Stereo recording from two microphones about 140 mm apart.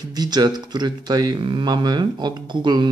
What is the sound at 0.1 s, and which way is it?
A man's voice, 30° right (ahead or behind).